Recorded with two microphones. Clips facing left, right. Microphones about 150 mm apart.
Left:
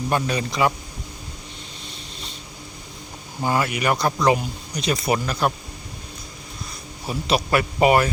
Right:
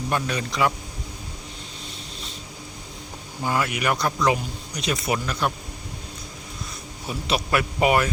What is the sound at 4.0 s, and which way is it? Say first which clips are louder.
Speech: left 2 dB; 35° left (ahead or behind).